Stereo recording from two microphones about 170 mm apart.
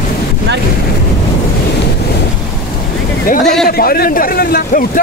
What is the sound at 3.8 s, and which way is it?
Speech, 60° left (ahead or behind).